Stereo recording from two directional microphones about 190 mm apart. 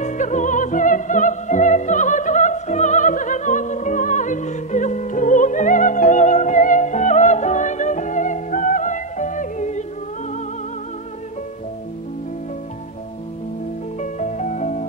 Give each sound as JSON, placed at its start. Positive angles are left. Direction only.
{"t": 0.0, "sound": "music", "side_deg": 40}
{"t": 14.1, "sound": "music", "side_deg": 40}